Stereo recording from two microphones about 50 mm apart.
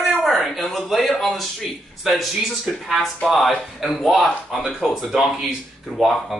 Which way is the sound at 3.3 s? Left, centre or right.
Centre.